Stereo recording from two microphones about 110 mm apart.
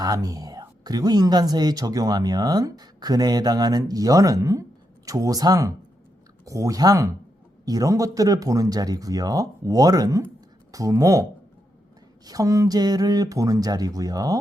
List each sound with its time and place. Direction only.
0.0 s speech: 35° right (ahead or behind)